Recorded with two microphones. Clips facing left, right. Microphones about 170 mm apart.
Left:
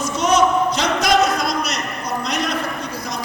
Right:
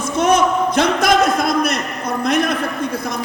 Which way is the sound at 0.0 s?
55° right (ahead or behind).